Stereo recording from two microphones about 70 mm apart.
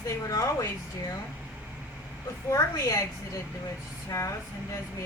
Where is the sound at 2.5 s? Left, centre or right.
Left.